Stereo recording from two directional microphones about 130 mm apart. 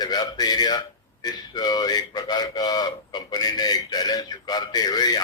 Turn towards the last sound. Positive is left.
turn(degrees=30)  # may be behind; listen again after turning